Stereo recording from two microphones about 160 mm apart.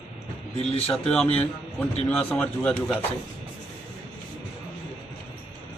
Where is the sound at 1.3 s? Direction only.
10° left (ahead or behind).